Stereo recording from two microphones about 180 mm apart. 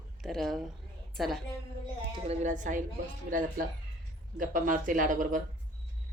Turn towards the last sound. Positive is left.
turn(degrees=-45)  # may be behind; listen again after turning